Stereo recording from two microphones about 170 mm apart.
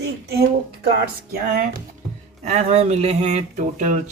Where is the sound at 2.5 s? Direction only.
40° right (ahead or behind).